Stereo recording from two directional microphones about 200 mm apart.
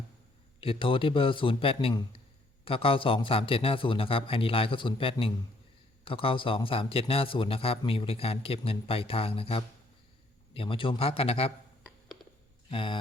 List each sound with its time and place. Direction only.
0.6 s speech: 25° left (ahead or behind)
12.7 s speech: 25° left (ahead or behind)